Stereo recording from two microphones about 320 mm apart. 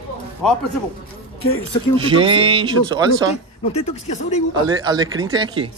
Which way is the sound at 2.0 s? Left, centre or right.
Centre.